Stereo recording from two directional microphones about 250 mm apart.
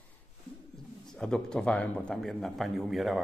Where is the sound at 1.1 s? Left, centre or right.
Centre.